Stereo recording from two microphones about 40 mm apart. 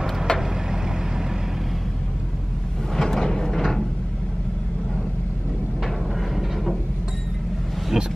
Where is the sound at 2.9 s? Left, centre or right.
Centre.